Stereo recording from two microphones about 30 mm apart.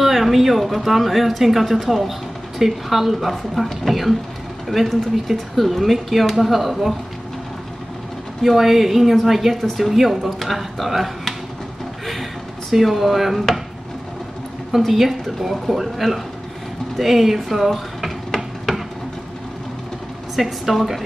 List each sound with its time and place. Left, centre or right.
0.0 s a sound: centre
0.7 s speech: centre
8.4 s speech: centre
12.8 s speech: centre
14.8 s speech: centre
17.0 s a sound: centre
20.3 s speech: centre